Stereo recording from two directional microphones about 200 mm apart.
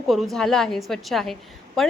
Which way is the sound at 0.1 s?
Centre (ahead or behind).